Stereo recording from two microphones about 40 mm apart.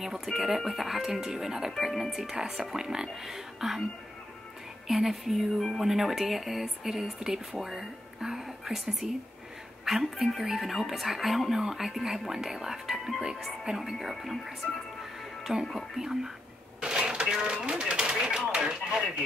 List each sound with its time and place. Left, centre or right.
0.0 s a woman's voice: centre
4.8 s a woman's voice: centre
14.4 s music: centre
15.7 s speech: centre
16.8 s speech: right